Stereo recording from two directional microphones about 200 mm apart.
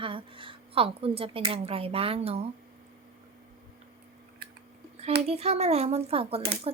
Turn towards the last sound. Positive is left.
turn(degrees=-30)  # may be behind; listen again after turning